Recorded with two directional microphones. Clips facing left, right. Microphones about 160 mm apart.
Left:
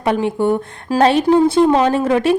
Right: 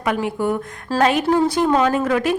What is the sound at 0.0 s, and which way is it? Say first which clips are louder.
A woman's voice: left 4 dB; 30° left (ahead or behind).